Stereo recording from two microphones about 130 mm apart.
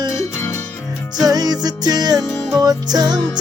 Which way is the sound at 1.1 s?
30° right (ahead or behind).